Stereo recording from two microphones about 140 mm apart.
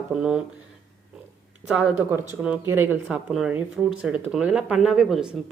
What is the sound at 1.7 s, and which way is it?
Speech, 10° right (ahead or behind).